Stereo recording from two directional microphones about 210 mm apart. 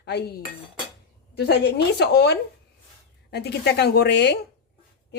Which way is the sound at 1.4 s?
55° left (ahead or behind).